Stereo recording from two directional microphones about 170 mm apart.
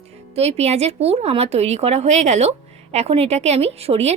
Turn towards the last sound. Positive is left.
turn(degrees=-35)  # may be behind; listen again after turning